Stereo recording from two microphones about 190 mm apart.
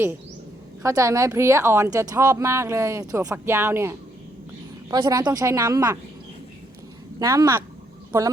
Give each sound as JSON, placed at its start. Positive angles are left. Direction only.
{"t": 0.8, "sound": "a woman's voice", "side_deg": -15}
{"t": 7.2, "sound": "a woman's voice", "side_deg": -15}